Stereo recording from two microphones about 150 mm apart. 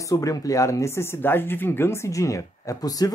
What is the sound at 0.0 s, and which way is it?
Speech, 20° left (ahead or behind).